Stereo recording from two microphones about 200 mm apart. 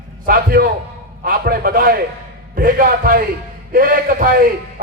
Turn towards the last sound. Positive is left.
turn(degrees=-45)  # may be behind; listen again after turning